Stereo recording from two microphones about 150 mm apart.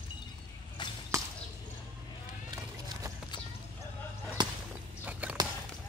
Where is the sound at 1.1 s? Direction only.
20° right (ahead or behind).